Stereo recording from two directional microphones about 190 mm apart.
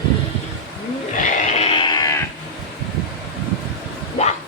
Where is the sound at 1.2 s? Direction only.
35° left (ahead or behind).